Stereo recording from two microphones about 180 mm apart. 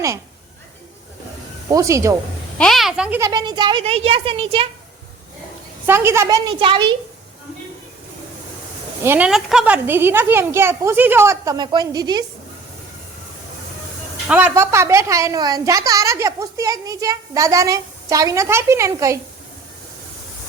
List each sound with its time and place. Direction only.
1.6 s a woman's voice: 20° right (ahead or behind)
2.6 s speech: centre (ahead or behind)
3.2 s speech: 20° right (ahead or behind)
5.8 s speech: 10° right (ahead or behind)
9.0 s a woman's voice: 10° right (ahead or behind)
14.3 s a woman's voice: 10° right (ahead or behind)